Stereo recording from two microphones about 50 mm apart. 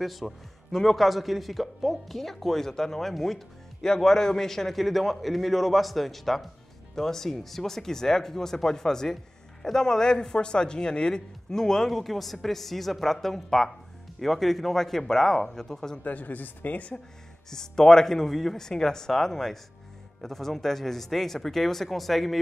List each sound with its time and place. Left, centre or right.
0.0 s speech: centre
16.0 s a woman's voice: left
17.5 s speech: centre